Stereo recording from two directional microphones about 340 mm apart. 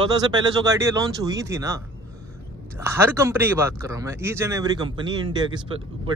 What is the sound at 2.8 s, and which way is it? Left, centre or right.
Speech, centre.